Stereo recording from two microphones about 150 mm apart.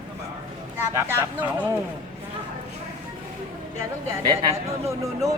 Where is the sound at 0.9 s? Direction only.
15° right (ahead or behind).